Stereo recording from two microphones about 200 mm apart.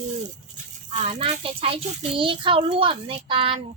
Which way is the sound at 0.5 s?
35° right (ahead or behind).